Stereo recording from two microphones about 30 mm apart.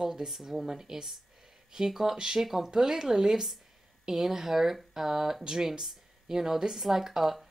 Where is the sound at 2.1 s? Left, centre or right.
Right.